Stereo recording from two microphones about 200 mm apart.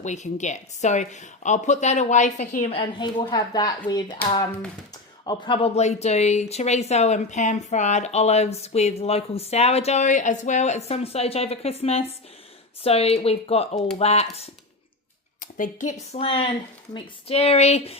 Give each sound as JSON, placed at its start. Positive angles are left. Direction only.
{"t": 0.0, "sound": "speech", "side_deg": 35}